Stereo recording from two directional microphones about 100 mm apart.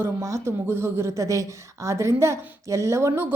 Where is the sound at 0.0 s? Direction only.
30° right (ahead or behind).